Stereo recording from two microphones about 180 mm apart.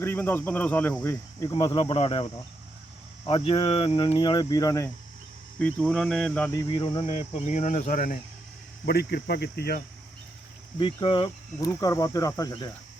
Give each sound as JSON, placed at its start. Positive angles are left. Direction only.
{"t": 0.0, "sound": "speech", "side_deg": 10}
{"t": 1.0, "sound": "speech", "side_deg": 20}
{"t": 5.5, "sound": "speech", "side_deg": 5}
{"t": 6.5, "sound": "speech", "side_deg": 20}
{"t": 8.9, "sound": "cricket", "side_deg": 60}
{"t": 10.8, "sound": "speech", "side_deg": 30}